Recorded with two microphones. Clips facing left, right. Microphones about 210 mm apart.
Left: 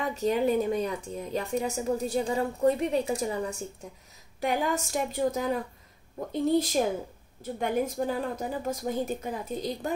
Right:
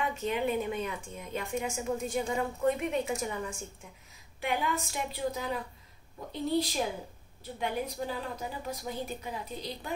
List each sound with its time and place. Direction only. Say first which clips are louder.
0.0 s a woman's voice: left 5 dB; 40° left (ahead or behind)